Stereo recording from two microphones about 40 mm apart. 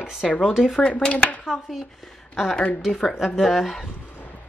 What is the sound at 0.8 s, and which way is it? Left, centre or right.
Speech, left.